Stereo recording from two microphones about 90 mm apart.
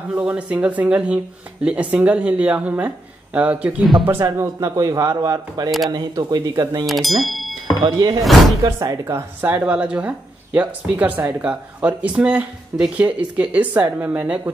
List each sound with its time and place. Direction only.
0.1 s speech: 15° right (ahead or behind)
4.6 s speech: 40° right (ahead or behind)
6.9 s speech: centre (ahead or behind)
7.8 s speech: 40° right (ahead or behind)
8.2 s speech: centre (ahead or behind)
8.6 s speech: 40° right (ahead or behind)
9.4 s speech: 20° right (ahead or behind)